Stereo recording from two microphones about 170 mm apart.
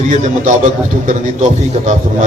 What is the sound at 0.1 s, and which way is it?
A man's voice, 45° right (ahead or behind).